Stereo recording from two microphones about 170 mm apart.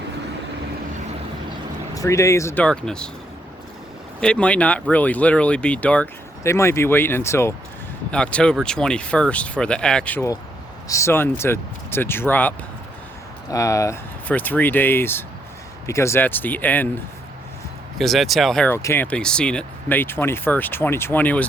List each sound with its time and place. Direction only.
2.0 s speech: 20° left (ahead or behind)
2.6 s speech: 5° left (ahead or behind)
4.2 s speech: 5° left (ahead or behind)
17.9 s speech: centre (ahead or behind)
19.1 s speech: 5° left (ahead or behind)